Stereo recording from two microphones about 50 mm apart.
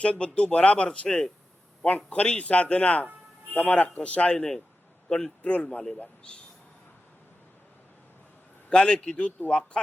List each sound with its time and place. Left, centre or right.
0.0 s speech: left
1.0 s a man's voice: centre
2.0 s speech: left
5.4 s a man's voice: left
5.6 s a man's voice: centre
8.7 s a man's voice: centre